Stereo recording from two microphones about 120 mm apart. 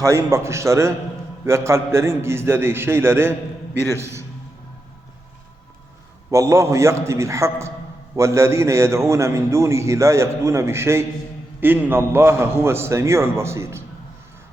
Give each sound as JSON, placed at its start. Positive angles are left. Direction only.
{"t": 0.0, "sound": "a man's voice", "side_deg": -25}
{"t": 6.3, "sound": "a man's voice", "side_deg": -25}